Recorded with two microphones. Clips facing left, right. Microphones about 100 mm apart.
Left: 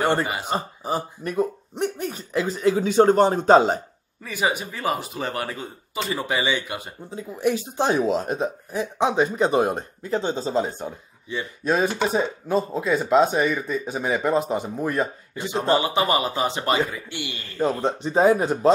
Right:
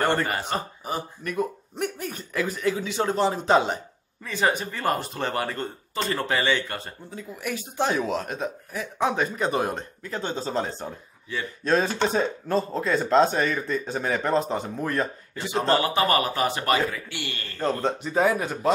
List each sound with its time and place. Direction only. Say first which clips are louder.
0.0 s speech: left 2 dB; 15° left (ahead or behind)
0.6 s speech: left 4 dB; 30° left (ahead or behind)
2.8 s speech: left 10 dB; 45° left (ahead or behind)
4.2 s speech: even; 10° left (ahead or behind)
18.0 s speech: left 6 dB; 30° left (ahead or behind)